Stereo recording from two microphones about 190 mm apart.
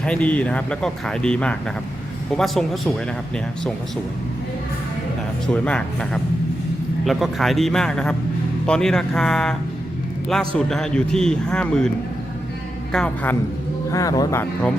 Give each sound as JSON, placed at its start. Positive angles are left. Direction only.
{"t": 0.0, "sound": "speech", "side_deg": 5}
{"t": 5.5, "sound": "speech", "side_deg": 5}
{"t": 12.9, "sound": "speech", "side_deg": 5}
{"t": 13.9, "sound": "speech", "side_deg": 20}